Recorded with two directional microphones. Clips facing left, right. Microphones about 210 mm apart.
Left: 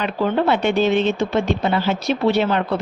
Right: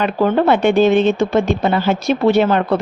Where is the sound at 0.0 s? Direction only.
50° right (ahead or behind).